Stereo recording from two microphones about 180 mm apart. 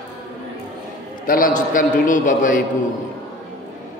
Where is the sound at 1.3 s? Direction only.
50° left (ahead or behind).